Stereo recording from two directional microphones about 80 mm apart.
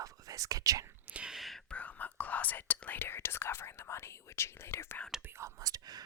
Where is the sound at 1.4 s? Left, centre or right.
Centre.